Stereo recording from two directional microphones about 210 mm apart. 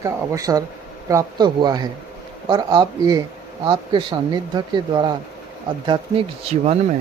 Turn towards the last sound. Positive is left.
turn(degrees=-30)  # may be behind; listen again after turning